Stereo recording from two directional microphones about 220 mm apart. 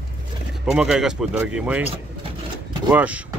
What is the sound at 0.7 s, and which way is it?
Speech, 5° right (ahead or behind).